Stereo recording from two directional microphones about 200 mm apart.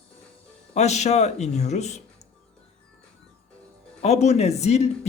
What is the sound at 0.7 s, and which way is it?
A man's voice, 35° left (ahead or behind).